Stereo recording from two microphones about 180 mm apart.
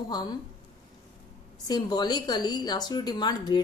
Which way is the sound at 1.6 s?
20° left (ahead or behind).